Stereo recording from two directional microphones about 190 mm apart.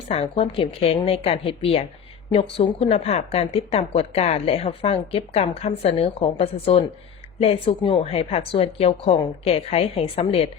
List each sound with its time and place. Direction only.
0.1 s speech: 30° left (ahead or behind)